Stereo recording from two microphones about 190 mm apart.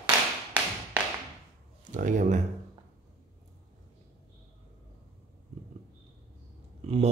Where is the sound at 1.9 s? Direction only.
40° right (ahead or behind).